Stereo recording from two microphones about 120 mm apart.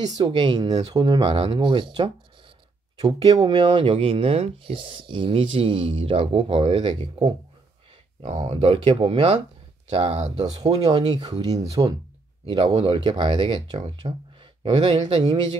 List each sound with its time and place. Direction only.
0.2 s speech: 40° right (ahead or behind)
8.3 s speech: 60° right (ahead or behind)
11.1 s speech: 40° right (ahead or behind)
12.6 s speech: 60° right (ahead or behind)
12.9 s speech: 40° right (ahead or behind)